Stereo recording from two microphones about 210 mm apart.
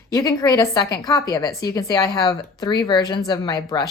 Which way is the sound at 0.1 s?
15° left (ahead or behind).